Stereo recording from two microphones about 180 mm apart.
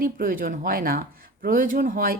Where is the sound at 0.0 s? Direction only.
50° right (ahead or behind).